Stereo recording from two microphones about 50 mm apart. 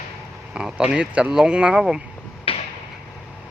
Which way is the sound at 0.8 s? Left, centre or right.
Right.